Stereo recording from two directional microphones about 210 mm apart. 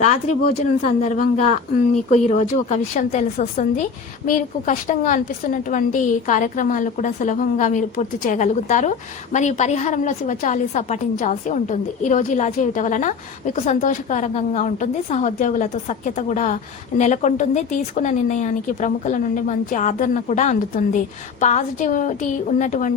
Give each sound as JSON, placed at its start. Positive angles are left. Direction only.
{"t": 0.0, "sound": "a woman's voice", "side_deg": 35}